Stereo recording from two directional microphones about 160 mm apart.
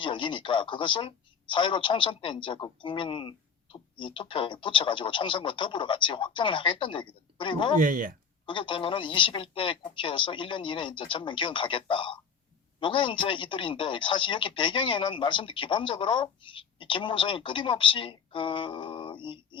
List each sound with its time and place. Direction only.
0.0 s speech: 30° left (ahead or behind)
7.8 s speech: 55° right (ahead or behind)
8.4 s speech: 30° left (ahead or behind)